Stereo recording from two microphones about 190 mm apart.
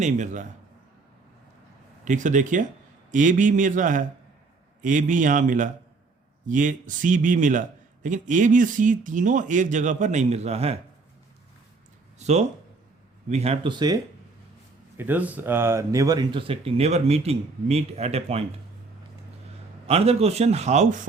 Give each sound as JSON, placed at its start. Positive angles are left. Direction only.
{"t": 0.0, "sound": "a man's voice", "side_deg": -40}
{"t": 2.0, "sound": "a man's voice", "side_deg": -40}
{"t": 12.2, "sound": "a man's voice", "side_deg": -35}
{"t": 14.9, "sound": "speech", "side_deg": -10}
{"t": 19.9, "sound": "a man's voice", "side_deg": -30}